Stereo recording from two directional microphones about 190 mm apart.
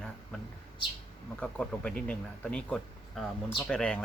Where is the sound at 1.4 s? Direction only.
5° left (ahead or behind).